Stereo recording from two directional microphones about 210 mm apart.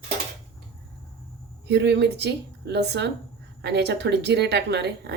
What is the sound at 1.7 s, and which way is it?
Speech, 55° right (ahead or behind).